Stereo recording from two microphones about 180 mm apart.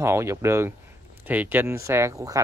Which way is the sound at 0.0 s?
15° right (ahead or behind).